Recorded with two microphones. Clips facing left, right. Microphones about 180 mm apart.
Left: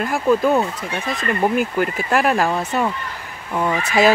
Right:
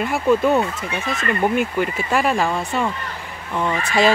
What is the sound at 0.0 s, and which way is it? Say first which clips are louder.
Speech: even; centre (ahead or behind).